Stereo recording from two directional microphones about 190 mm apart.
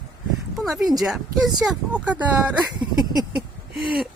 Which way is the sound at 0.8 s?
20° right (ahead or behind).